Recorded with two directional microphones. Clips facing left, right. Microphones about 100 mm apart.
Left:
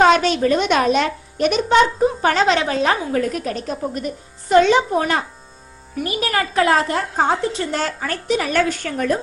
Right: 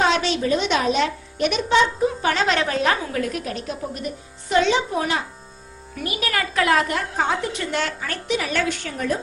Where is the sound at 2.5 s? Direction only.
25° left (ahead or behind); by 5.2 s 50° left (ahead or behind).